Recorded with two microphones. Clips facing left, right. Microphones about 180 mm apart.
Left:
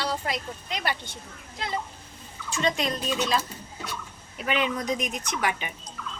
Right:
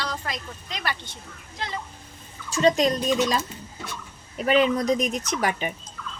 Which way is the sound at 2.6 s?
40° right (ahead or behind).